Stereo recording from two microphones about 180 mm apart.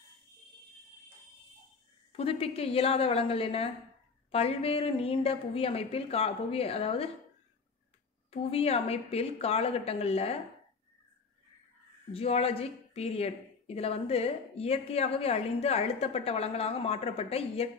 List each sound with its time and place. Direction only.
2.1 s a woman's voice: 35° left (ahead or behind)
8.3 s a woman's voice: 35° left (ahead or behind)
12.1 s a woman's voice: 35° left (ahead or behind)